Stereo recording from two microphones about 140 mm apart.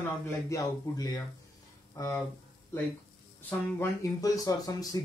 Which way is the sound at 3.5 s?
20° left (ahead or behind).